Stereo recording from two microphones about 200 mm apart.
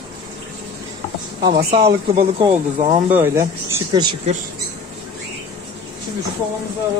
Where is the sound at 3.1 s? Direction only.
10° right (ahead or behind).